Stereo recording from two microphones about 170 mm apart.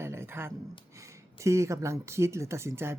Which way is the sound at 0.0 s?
15° right (ahead or behind).